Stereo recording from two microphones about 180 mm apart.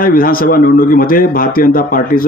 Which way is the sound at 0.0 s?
55° left (ahead or behind).